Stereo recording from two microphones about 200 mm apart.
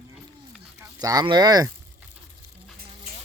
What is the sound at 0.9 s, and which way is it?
Speech, 20° right (ahead or behind).